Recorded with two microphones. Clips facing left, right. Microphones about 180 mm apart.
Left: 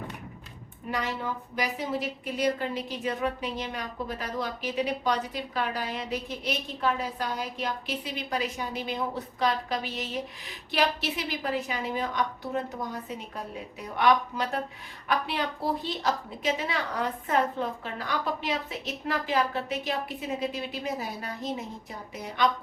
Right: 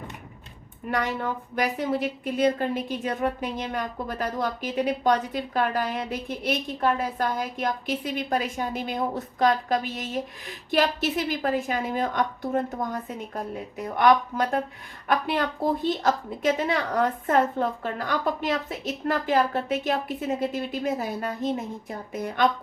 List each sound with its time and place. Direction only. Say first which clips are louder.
0.9 s a woman's voice: right 4 dB; 55° right (ahead or behind)